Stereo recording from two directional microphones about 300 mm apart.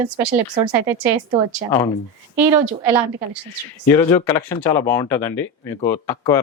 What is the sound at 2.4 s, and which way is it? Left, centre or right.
Speech, centre.